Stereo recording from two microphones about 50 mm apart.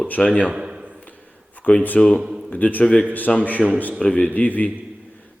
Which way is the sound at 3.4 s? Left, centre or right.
Left.